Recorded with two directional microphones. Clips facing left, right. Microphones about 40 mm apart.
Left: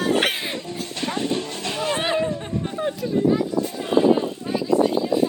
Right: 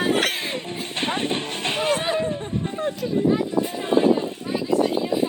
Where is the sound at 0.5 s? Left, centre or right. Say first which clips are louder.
Right 1 dB; right.